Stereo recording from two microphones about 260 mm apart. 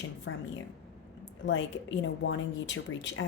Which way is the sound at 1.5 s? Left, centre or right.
Left.